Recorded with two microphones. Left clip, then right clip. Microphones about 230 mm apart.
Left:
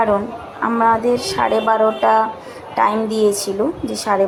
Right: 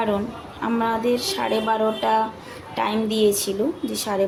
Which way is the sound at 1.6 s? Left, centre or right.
Centre.